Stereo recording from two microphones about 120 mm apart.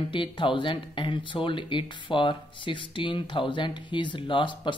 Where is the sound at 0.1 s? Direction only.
45° left (ahead or behind).